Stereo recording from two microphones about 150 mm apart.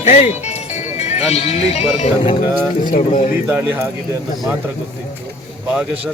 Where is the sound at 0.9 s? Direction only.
45° left (ahead or behind).